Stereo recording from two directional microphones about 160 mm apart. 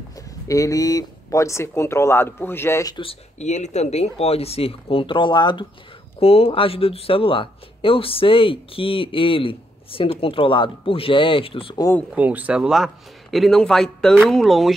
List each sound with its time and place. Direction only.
0.5 s speech: 20° left (ahead or behind)
3.0 s speech: 40° left (ahead or behind)
12.2 s a man's voice: 10° right (ahead or behind)